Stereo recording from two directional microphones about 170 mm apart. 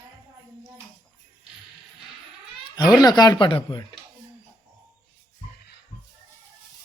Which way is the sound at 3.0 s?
25° left (ahead or behind).